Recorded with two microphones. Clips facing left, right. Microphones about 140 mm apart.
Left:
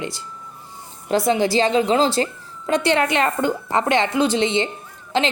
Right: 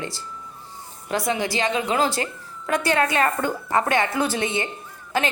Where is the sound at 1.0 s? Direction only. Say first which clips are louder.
Left 6 dB; 25° left (ahead or behind).